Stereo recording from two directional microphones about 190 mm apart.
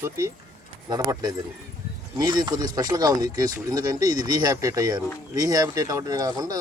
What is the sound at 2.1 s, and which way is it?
Speech, 20° right (ahead or behind).